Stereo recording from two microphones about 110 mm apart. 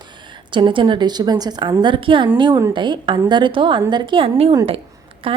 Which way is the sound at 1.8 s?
50° right (ahead or behind).